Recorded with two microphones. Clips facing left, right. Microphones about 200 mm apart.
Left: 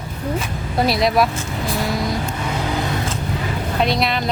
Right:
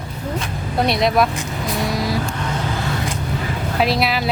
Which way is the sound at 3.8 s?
5° right (ahead or behind).